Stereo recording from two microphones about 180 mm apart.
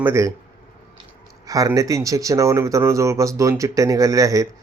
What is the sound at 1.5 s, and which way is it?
Speech, 20° right (ahead or behind).